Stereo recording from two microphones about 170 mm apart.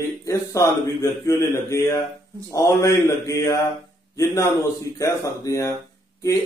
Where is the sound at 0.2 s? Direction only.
20° left (ahead or behind).